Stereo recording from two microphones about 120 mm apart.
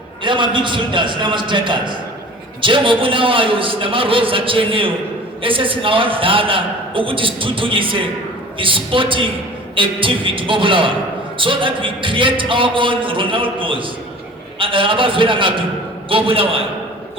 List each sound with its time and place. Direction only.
0.2 s a man's voice: 45° right (ahead or behind)